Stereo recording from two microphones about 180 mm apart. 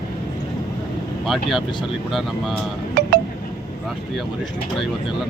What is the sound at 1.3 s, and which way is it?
Speech, centre (ahead or behind).